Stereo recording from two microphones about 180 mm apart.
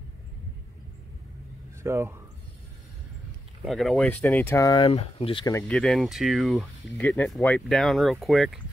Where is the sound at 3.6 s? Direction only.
Centre (ahead or behind); by 4.8 s 20° left (ahead or behind).